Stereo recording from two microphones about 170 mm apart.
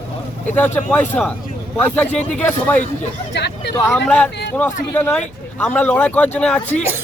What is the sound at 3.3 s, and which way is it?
Speech, 85° left.